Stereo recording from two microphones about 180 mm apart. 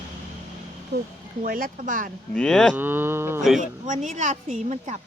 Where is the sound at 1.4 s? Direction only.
50° right (ahead or behind).